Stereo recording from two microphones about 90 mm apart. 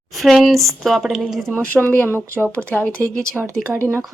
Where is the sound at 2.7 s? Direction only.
15° left (ahead or behind).